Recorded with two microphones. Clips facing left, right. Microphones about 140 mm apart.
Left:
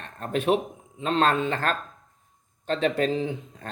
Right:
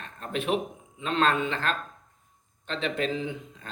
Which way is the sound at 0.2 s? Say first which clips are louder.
Left 4 dB; 40° left (ahead or behind).